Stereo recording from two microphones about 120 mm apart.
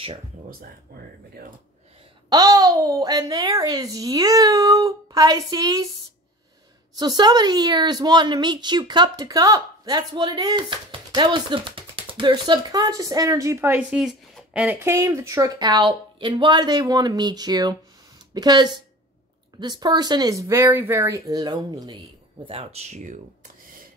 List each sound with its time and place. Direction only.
2.2 s a woman's voice: 35° right (ahead or behind)
7.0 s a woman's voice: 35° right (ahead or behind)
13.8 s a woman's voice: 5° right (ahead or behind); by 23.1 s 75° right (ahead or behind)